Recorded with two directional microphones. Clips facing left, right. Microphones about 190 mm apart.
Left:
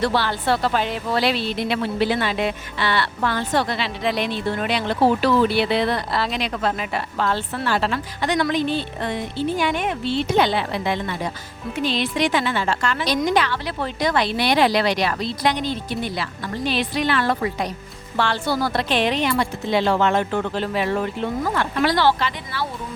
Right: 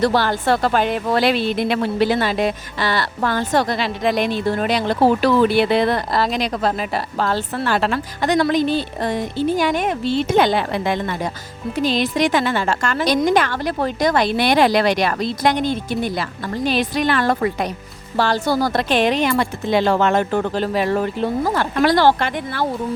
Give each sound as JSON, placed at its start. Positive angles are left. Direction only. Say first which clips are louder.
{"t": 0.0, "sound": "speech", "louder": "right 4 dB", "side_deg": -45}